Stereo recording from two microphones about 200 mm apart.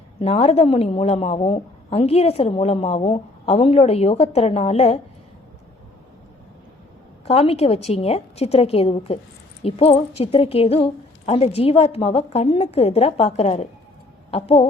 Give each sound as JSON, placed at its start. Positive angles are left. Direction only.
{"t": 0.2, "sound": "a woman's voice", "side_deg": 30}
{"t": 7.3, "sound": "a woman's voice", "side_deg": 30}